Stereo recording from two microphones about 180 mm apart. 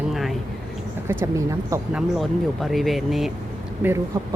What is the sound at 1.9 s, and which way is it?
A woman's voice, centre (ahead or behind).